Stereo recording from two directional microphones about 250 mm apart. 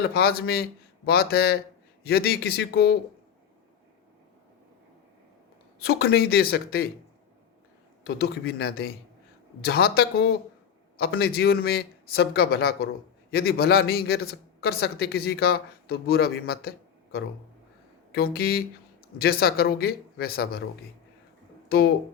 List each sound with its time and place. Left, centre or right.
0.0 s speech: left
5.8 s speech: left
8.0 s speech: left
21.7 s speech: left